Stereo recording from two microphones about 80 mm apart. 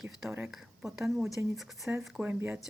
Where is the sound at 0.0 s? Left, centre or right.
Centre.